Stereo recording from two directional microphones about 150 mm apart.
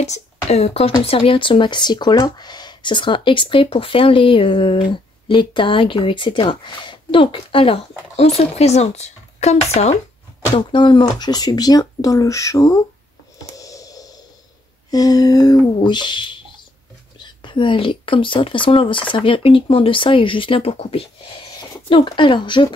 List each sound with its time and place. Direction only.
0.0 s speech: 45° left (ahead or behind)
10.6 s speech: 35° left (ahead or behind)
13.6 s a sound: 20° left (ahead or behind)
14.9 s speech: 25° left (ahead or behind)